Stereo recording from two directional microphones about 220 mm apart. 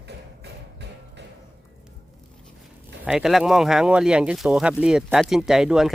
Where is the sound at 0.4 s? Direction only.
50° right (ahead or behind).